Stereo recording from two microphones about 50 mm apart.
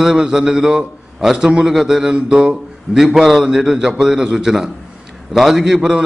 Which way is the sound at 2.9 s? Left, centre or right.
Centre.